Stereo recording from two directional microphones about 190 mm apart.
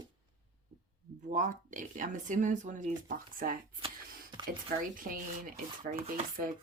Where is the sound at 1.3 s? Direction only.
45° right (ahead or behind).